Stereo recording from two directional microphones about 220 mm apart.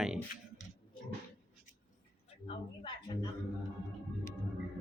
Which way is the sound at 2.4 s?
25° left (ahead or behind).